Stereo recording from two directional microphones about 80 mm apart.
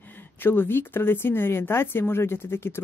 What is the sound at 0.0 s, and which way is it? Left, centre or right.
Speech, left.